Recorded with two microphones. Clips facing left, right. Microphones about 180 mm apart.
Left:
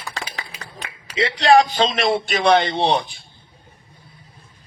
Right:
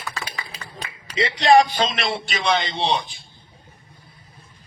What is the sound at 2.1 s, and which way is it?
A man's voice, 55° left (ahead or behind).